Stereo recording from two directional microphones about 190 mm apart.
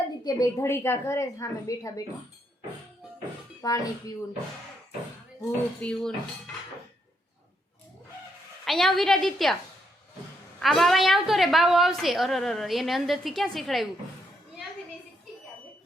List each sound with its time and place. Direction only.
0.3 s a woman's voice: 20° left (ahead or behind)
3.6 s speech: 20° left (ahead or behind)
5.8 s a woman's voice: 5° left (ahead or behind)
8.6 s a woman's voice: centre (ahead or behind)
10.6 s a woman's voice: centre (ahead or behind)